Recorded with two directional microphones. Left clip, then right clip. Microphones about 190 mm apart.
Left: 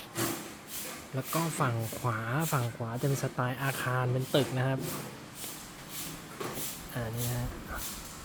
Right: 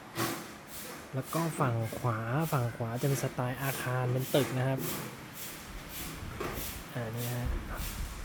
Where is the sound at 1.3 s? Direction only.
Centre (ahead or behind).